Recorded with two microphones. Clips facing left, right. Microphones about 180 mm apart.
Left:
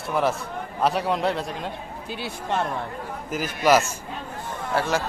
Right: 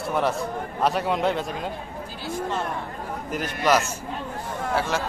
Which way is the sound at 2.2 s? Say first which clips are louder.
Left 1 dB; 70° left (ahead or behind).